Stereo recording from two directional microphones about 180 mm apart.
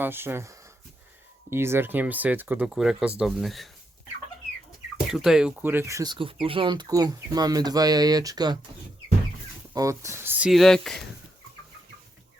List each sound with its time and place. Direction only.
0.0 s speech: 10° right (ahead or behind)
5.1 s speech: centre (ahead or behind); by 8.5 s 20° right (ahead or behind)
9.7 s speech: 15° right (ahead or behind); by 11.0 s centre (ahead or behind)